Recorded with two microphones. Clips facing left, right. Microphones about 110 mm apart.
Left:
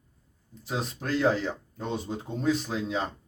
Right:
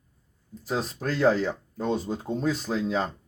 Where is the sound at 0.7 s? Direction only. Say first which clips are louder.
Right 2 dB; 40° right (ahead or behind).